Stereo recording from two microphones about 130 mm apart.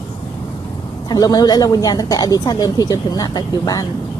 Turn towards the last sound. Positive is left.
turn(degrees=30)  # may be behind; listen again after turning